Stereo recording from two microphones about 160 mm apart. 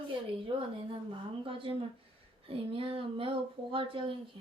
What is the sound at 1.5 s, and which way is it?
Speech, 35° right (ahead or behind).